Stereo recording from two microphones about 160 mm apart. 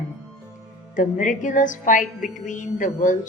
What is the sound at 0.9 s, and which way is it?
A woman's voice, 55° left (ahead or behind).